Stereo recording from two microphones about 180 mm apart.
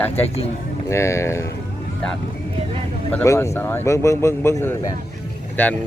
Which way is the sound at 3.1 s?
10° left (ahead or behind).